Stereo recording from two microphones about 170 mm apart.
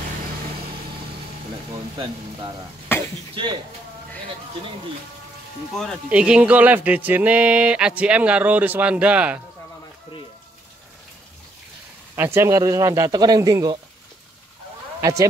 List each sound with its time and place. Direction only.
2.9 s cough: 15° left (ahead or behind)
3.4 s speech: 30° right (ahead or behind)
5.7 s speech: 5° left (ahead or behind)
12.4 s speech: 20° right (ahead or behind)
15.0 s speech: 20° right (ahead or behind)